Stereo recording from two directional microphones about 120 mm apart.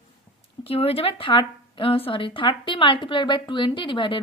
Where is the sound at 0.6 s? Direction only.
55° left (ahead or behind).